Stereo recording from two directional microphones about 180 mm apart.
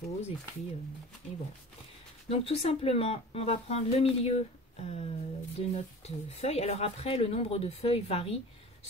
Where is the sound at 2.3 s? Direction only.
35° left (ahead or behind).